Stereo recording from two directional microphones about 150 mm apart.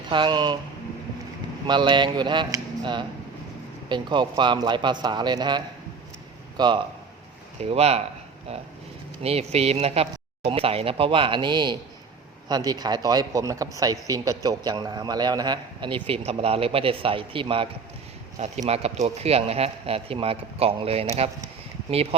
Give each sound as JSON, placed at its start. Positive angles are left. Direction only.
{"t": 0.1, "sound": "speech", "side_deg": -30}
{"t": 1.6, "sound": "a man's voice", "side_deg": -30}
{"t": 7.6, "sound": "speech", "side_deg": -45}
{"t": 9.2, "sound": "a man's voice", "side_deg": -45}
{"t": 18.3, "sound": "speech", "side_deg": -45}